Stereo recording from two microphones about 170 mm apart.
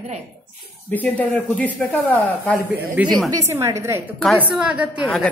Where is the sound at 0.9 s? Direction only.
10° left (ahead or behind).